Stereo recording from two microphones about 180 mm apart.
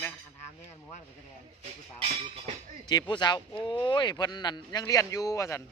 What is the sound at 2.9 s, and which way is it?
Speech, 25° left (ahead or behind).